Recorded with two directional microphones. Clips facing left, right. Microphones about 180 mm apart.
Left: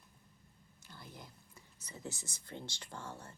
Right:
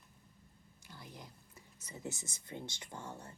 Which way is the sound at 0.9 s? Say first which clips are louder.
Right 1 dB; 15° right (ahead or behind).